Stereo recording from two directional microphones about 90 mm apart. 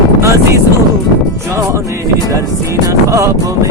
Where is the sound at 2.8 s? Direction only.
35° right (ahead or behind).